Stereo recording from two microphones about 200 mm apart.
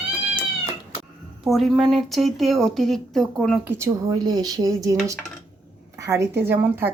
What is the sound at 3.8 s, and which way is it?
A woman's voice, 15° right (ahead or behind).